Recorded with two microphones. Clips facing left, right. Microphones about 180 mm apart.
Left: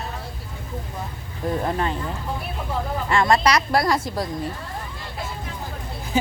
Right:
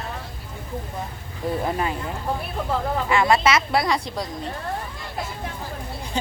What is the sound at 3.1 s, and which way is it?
A woman's voice, 5° right (ahead or behind).